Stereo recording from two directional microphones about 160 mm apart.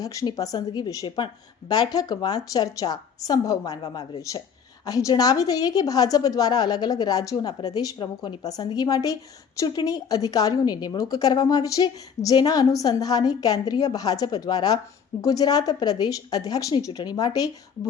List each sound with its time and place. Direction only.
0.0 s a woman's voice: 20° left (ahead or behind)